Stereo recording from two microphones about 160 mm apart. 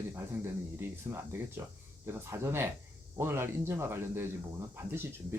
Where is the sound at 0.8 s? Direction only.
15° right (ahead or behind).